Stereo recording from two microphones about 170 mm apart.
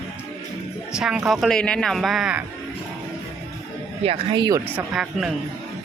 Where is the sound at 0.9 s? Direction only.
5° right (ahead or behind).